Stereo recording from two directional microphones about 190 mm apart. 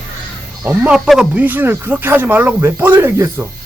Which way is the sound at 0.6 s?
10° right (ahead or behind).